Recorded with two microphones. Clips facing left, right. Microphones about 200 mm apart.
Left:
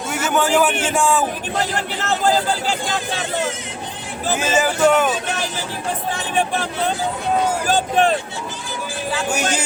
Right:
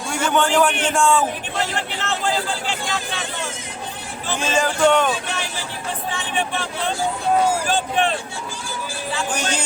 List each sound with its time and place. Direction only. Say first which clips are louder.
0.1 s a man's voice: left 1 dB; 5° left (ahead or behind)
1.5 s speech: left 2 dB; 40° left (ahead or behind)
4.4 s speech: left 1 dB; 5° left (ahead or behind)
6.1 s speech: left 4 dB; 40° left (ahead or behind)
9.3 s speech: left 4 dB; 10° left (ahead or behind)